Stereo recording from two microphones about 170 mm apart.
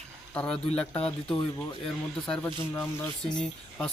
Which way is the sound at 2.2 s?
5° left (ahead or behind).